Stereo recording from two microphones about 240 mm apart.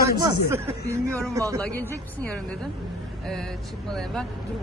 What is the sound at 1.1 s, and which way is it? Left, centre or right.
Speech, centre.